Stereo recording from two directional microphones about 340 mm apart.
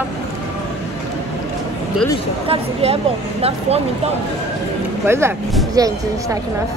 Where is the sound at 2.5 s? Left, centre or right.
Centre.